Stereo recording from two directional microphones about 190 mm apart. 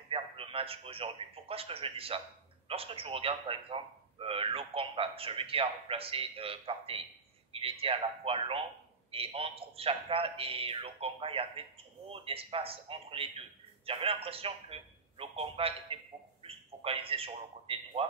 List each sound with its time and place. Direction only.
0.1 s a man's voice: 30° right (ahead or behind)